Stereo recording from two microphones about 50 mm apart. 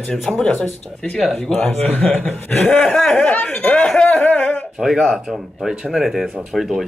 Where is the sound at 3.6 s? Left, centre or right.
Centre.